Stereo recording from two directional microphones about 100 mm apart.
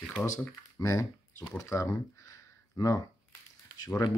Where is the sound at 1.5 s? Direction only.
30° left (ahead or behind).